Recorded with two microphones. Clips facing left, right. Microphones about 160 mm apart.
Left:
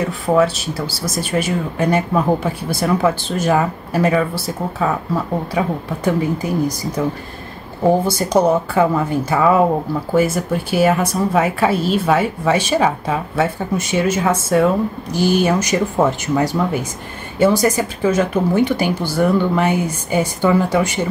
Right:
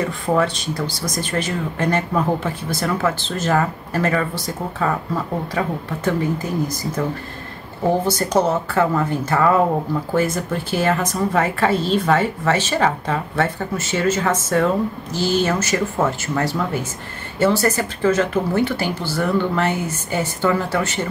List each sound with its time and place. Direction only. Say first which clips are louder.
0.4 s a woman's voice: left 4 dB; 5° left (ahead or behind)
8.1 s a woman's voice: left 3 dB; 10° left (ahead or behind)